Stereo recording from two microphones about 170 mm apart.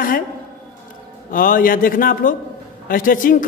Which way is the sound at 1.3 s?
55° left (ahead or behind).